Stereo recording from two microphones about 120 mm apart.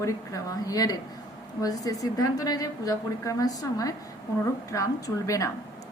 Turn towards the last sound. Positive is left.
turn(degrees=25)  # may be behind; listen again after turning